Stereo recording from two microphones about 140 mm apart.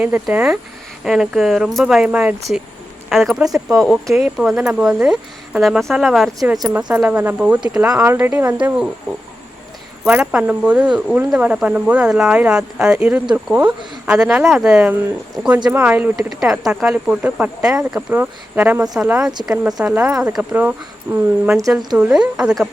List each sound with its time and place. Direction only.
0.0 s speech: 10° right (ahead or behind)
10.0 s speech: 5° right (ahead or behind)